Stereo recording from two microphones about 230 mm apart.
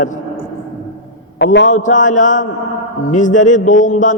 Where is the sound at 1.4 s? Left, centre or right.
Left.